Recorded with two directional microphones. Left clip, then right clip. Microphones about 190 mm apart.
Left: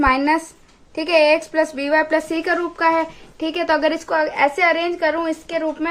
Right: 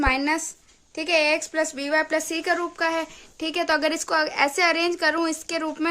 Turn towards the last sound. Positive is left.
turn(degrees=-45)  # may be behind; listen again after turning